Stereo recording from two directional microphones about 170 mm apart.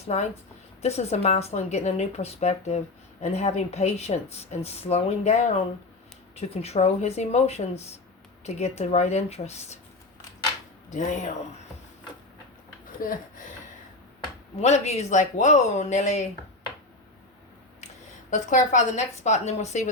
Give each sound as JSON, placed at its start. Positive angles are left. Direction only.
{"t": 0.0, "sound": "a woman's voice", "side_deg": 40}
{"t": 10.8, "sound": "speech", "side_deg": 45}
{"t": 13.0, "sound": "speech", "side_deg": 50}
{"t": 14.6, "sound": "speech", "side_deg": 40}
{"t": 18.3, "sound": "speech", "side_deg": 45}